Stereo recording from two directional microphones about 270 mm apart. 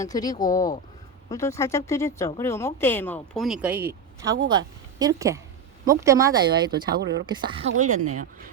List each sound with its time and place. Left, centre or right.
0.0 s a woman's voice: centre
6.9 s speech: right
7.3 s a woman's voice: centre